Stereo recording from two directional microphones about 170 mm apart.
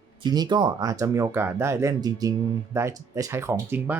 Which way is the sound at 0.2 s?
25° right (ahead or behind).